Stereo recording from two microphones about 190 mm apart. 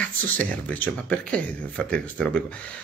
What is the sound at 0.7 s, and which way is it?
A man's voice, 5° left (ahead or behind).